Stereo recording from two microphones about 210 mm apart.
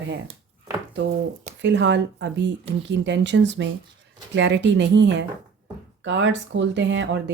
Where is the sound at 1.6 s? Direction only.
60° right (ahead or behind).